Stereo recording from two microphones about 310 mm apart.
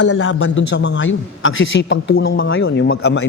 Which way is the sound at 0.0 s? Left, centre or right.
Left.